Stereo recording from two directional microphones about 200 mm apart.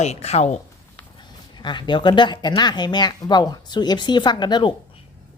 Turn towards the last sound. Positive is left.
turn(degrees=20)  # may be behind; listen again after turning